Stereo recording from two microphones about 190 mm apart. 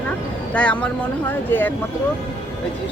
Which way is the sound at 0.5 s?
5° left (ahead or behind).